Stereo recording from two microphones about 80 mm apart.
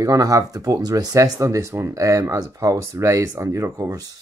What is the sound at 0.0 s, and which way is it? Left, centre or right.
Speech, right.